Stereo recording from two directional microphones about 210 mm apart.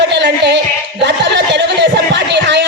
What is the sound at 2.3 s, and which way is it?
Music, 55° right (ahead or behind).